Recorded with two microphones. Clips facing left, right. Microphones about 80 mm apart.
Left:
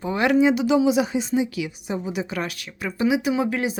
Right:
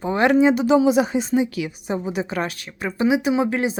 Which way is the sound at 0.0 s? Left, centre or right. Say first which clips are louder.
Right 2 dB; right.